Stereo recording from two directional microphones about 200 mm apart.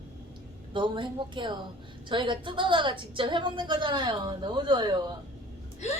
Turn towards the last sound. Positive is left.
turn(degrees=35)  # may be behind; listen again after turning